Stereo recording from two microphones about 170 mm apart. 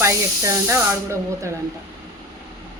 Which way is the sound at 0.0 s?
15° right (ahead or behind).